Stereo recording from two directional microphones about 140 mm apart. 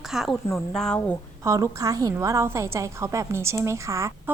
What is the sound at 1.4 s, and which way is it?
A woman's voice, 20° right (ahead or behind).